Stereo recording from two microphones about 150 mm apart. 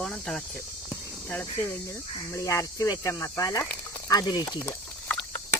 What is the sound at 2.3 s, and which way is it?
Speech, 20° left (ahead or behind).